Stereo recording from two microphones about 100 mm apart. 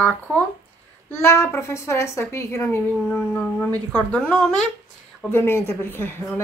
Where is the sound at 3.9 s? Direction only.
15° left (ahead or behind).